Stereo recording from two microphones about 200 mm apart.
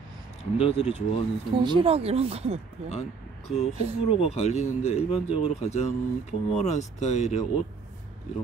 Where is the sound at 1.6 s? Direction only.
25° right (ahead or behind).